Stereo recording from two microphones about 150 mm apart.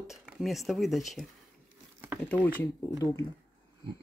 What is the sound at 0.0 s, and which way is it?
Speech, 5° right (ahead or behind).